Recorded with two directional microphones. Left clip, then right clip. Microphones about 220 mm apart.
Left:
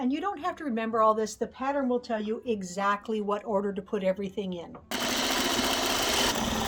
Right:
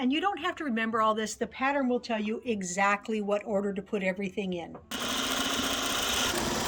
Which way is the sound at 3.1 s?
10° left (ahead or behind).